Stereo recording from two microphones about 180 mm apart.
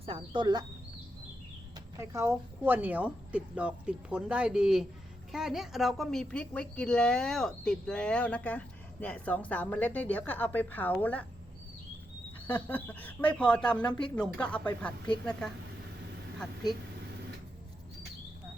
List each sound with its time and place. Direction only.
0.0 s speech: 30° right (ahead or behind)
1.7 s a sound: 15° right (ahead or behind)
2.3 s a woman's voice: 10° right (ahead or behind); by 11.3 s 10° left (ahead or behind)
12.6 s a woman's voice: 10° left (ahead or behind)